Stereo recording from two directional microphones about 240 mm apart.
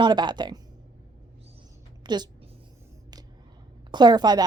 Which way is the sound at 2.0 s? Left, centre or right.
Centre.